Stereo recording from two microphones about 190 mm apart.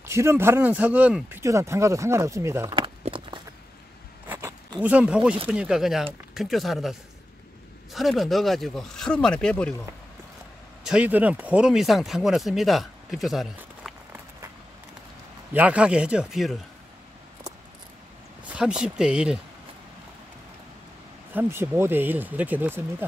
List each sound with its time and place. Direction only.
0.0 s speech: 15° right (ahead or behind)
2.8 s a sound: 25° right (ahead or behind)
4.3 s zipper: 15° right (ahead or behind)
5.5 s speech: 5° right (ahead or behind)
10.8 s speech: 5° right (ahead or behind)
15.5 s speech: 5° right (ahead or behind)
18.5 s speech: 5° right (ahead or behind)
21.3 s speech: 10° right (ahead or behind)